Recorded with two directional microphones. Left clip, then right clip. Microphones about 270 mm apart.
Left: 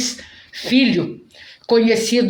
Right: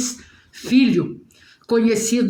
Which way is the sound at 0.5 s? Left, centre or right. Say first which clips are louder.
Left 1 dB; left.